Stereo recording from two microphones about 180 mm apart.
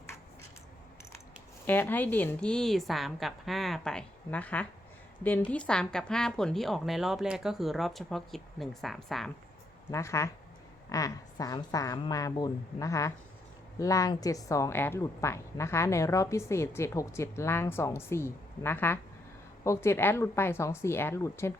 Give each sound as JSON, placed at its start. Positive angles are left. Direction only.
{"t": 1.6, "sound": "speech", "side_deg": 10}
{"t": 9.9, "sound": "a woman's voice", "side_deg": 15}